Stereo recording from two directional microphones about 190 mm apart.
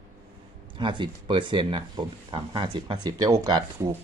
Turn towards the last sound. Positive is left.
turn(degrees=-20)  # may be behind; listen again after turning